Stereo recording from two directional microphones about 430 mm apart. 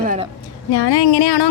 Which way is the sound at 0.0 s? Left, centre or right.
Centre.